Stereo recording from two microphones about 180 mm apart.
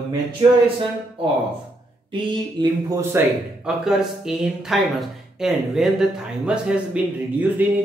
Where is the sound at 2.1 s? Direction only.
25° right (ahead or behind).